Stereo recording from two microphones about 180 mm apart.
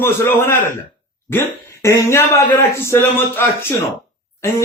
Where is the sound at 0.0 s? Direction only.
15° left (ahead or behind).